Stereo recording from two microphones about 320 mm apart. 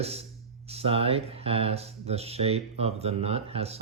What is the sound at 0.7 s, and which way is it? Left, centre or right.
Speech, centre.